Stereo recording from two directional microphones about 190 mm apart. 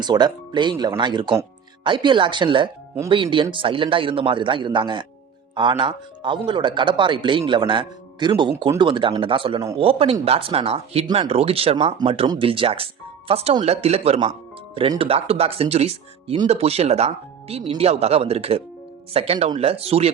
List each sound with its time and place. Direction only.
0.0 s speech: 20° right (ahead or behind)